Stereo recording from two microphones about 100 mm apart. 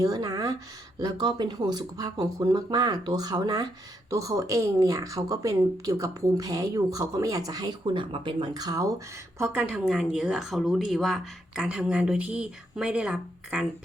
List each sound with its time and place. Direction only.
0.0 s a woman's voice: 35° right (ahead or behind)
7.9 s speech: 55° right (ahead or behind); by 9.0 s 35° right (ahead or behind)
9.4 s speech: 15° right (ahead or behind)